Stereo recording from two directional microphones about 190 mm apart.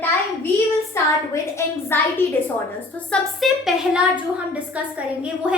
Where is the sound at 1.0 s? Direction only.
15° left (ahead or behind).